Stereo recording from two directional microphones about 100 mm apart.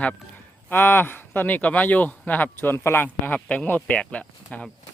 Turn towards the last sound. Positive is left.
turn(degrees=15)  # may be behind; listen again after turning